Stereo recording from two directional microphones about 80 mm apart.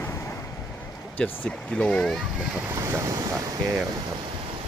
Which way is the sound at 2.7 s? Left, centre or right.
Right.